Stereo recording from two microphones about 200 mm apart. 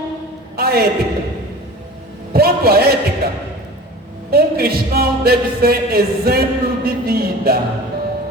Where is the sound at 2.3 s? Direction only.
50° right (ahead or behind).